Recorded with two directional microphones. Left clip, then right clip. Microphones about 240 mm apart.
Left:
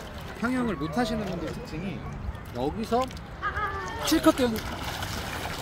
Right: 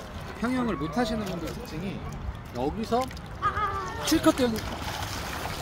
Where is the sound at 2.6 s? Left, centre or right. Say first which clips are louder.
Even; centre.